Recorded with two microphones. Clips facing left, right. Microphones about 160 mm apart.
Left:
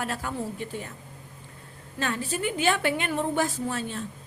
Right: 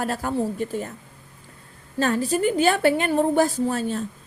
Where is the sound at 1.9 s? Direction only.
40° right (ahead or behind).